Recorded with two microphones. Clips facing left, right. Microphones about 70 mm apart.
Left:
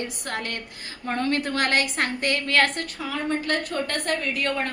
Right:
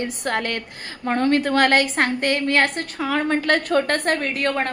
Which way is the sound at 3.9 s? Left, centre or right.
Right.